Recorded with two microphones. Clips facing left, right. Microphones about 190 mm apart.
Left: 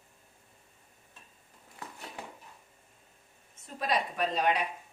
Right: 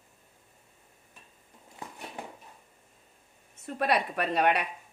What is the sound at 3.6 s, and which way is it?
A woman's voice, 65° right (ahead or behind).